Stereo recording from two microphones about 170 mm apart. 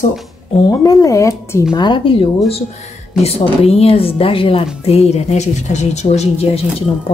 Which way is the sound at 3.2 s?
35° left (ahead or behind).